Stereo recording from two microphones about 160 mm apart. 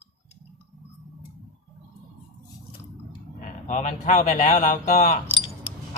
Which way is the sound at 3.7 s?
50° left (ahead or behind).